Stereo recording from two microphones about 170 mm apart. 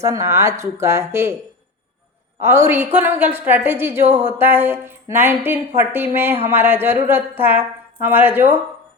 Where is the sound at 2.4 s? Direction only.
15° right (ahead or behind).